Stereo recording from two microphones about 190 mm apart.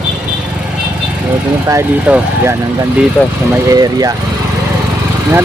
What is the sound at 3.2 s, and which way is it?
Speech, 5° left (ahead or behind).